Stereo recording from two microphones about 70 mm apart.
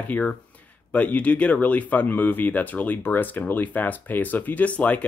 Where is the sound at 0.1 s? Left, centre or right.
Centre.